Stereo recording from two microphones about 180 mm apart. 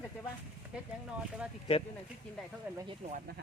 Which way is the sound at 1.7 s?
30° left (ahead or behind).